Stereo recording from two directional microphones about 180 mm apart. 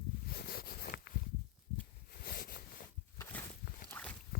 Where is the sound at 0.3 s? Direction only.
60° left (ahead or behind).